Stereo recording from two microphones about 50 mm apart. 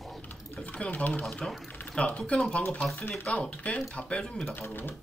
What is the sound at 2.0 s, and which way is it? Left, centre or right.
Speech, left.